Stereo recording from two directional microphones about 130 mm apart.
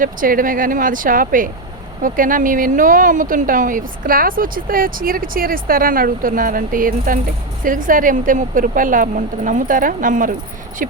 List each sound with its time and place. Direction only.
0.0 s speech: 90° right